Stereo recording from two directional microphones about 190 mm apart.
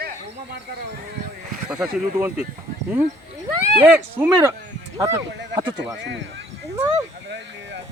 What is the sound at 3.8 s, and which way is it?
Speech, 5° right (ahead or behind).